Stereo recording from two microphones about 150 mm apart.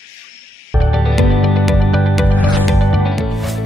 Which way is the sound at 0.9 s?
Centre (ahead or behind).